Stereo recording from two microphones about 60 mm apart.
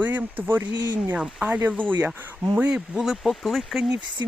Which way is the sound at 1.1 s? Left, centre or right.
Centre.